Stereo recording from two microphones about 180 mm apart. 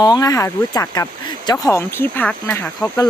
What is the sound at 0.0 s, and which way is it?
Speech, 20° left (ahead or behind).